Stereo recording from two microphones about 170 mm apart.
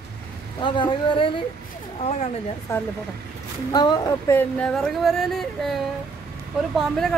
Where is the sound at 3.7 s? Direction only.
25° left (ahead or behind).